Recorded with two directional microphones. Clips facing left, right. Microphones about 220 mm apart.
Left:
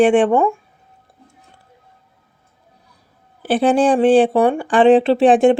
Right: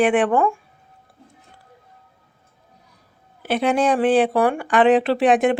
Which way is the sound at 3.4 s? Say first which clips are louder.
Left 5 dB; 30° left (ahead or behind).